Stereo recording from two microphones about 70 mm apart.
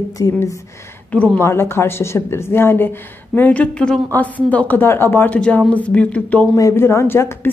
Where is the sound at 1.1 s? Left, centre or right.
Centre.